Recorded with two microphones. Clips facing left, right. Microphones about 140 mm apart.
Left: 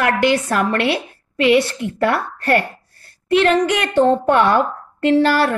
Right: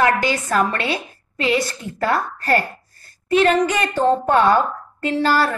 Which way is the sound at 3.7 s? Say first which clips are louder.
Left 3 dB; 65° left (ahead or behind).